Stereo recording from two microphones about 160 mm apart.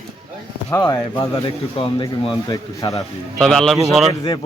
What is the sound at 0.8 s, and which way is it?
Speech, 30° left (ahead or behind).